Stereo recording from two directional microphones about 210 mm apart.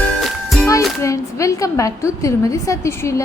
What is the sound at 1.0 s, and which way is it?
A woman's voice, 15° left (ahead or behind).